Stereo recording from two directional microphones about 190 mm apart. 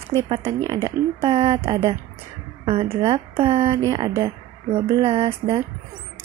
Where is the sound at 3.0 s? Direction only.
30° right (ahead or behind).